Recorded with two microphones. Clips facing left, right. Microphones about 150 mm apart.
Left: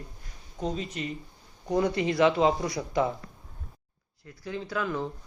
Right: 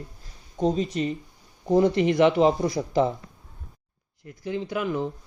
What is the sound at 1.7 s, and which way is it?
Speech, 25° right (ahead or behind).